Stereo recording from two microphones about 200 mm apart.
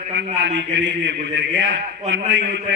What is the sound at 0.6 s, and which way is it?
Speech, 65° right (ahead or behind).